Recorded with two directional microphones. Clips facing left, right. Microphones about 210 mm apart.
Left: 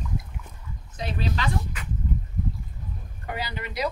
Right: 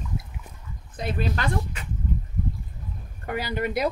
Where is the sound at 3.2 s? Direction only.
50° right (ahead or behind).